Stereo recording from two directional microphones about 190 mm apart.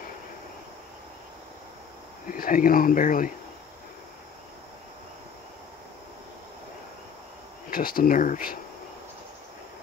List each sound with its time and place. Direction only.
2.3 s speech: 45° left (ahead or behind)
7.7 s speech: 50° left (ahead or behind)